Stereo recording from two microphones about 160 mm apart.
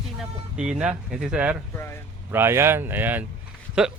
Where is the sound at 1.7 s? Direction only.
15° left (ahead or behind).